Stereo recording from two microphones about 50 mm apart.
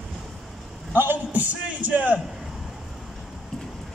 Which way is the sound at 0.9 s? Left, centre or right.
Right.